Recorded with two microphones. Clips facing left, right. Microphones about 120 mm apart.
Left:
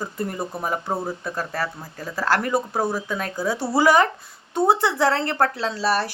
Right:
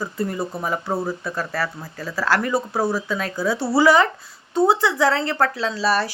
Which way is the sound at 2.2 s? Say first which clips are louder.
Right 1 dB; 50° left (ahead or behind).